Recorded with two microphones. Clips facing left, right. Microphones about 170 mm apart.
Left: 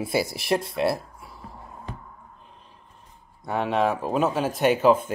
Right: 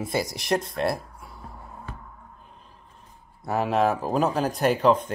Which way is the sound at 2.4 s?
Centre (ahead or behind).